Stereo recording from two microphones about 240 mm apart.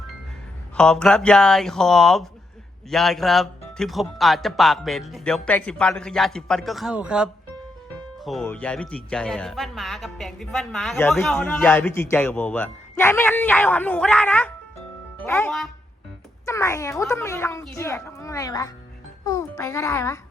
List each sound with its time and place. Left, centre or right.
0.8 s a child's voice: centre